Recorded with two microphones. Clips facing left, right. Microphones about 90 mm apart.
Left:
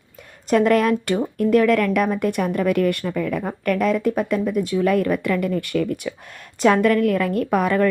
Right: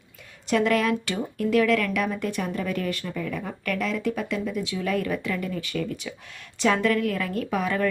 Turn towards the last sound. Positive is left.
turn(degrees=55)  # may be behind; listen again after turning